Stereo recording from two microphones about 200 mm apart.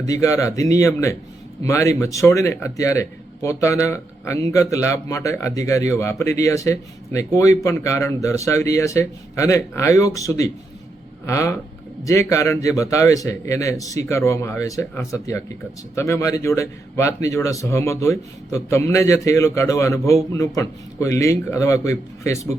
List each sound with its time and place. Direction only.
0.0 s a man's voice: 15° left (ahead or behind)